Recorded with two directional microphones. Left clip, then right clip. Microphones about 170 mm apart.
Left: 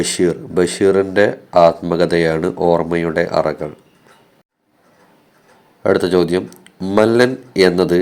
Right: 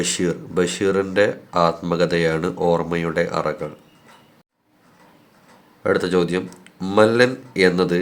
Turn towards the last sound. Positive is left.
turn(degrees=25)  # may be behind; listen again after turning